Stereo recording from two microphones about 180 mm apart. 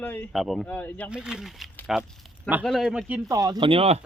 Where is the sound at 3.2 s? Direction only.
20° right (ahead or behind).